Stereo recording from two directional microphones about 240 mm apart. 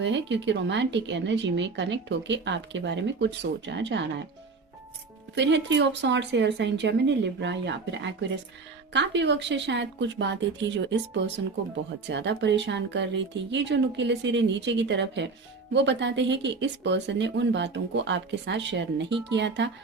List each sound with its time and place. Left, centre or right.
0.0 s speech: right
5.3 s speech: right